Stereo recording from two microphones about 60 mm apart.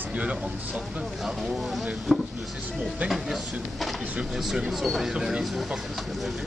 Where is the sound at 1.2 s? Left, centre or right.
Centre.